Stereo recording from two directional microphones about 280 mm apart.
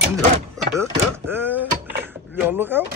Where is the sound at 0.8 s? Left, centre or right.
Centre.